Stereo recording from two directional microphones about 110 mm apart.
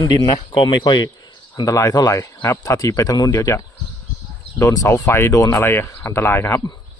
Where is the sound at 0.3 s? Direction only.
50° left (ahead or behind).